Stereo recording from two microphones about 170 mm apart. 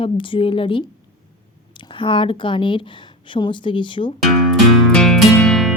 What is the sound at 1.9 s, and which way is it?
Speech, 30° left (ahead or behind).